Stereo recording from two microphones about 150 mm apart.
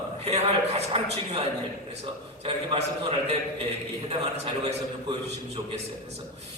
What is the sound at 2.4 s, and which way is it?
Speech, 40° right (ahead or behind).